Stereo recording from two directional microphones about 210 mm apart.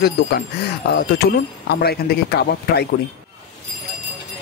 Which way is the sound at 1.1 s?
50° left (ahead or behind).